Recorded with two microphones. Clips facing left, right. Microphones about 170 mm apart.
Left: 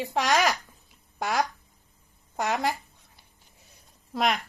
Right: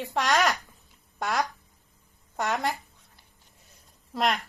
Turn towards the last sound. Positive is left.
turn(degrees=0)  # may be behind; listen again after turning